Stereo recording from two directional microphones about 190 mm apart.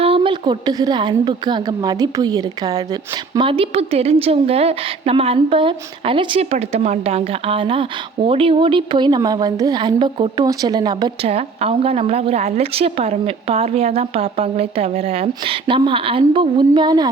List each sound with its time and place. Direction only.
0.0 s a woman's voice: 30° right (ahead or behind)
11.3 s a woman's voice: 30° right (ahead or behind)